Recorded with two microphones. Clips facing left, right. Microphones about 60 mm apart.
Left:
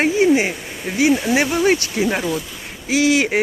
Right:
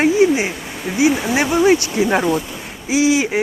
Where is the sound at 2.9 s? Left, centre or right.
Left.